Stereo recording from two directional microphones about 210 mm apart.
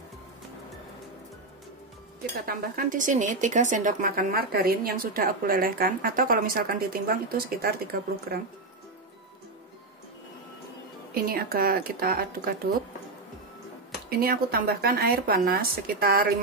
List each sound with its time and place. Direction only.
2.4 s speech: 40° right (ahead or behind)
11.1 s speech: 45° right (ahead or behind)
14.0 s speech: 45° right (ahead or behind)